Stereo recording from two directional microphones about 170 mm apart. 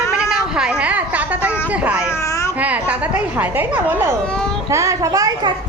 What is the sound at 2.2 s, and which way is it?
Babbling, 20° left (ahead or behind).